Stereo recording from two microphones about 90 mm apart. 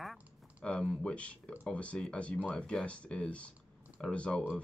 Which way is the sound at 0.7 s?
10° left (ahead or behind).